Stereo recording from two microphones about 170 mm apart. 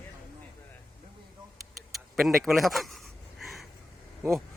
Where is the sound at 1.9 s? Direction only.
Centre (ahead or behind).